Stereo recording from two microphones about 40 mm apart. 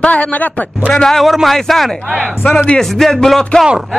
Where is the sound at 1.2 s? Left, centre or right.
Centre.